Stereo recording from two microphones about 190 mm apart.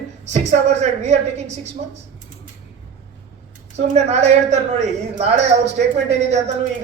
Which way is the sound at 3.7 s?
35° right (ahead or behind).